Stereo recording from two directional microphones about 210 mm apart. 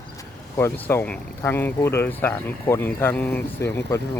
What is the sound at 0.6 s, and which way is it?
Speech, 10° left (ahead or behind).